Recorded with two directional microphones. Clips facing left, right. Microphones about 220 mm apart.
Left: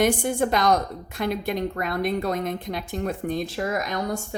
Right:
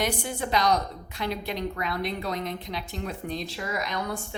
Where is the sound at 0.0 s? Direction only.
50° left (ahead or behind).